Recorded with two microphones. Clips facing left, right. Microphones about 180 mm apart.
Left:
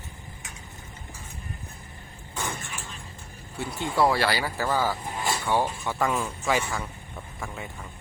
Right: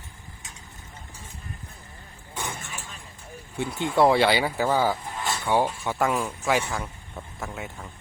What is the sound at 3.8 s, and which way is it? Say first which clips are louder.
Speech: right 4 dB; 20° right (ahead or behind).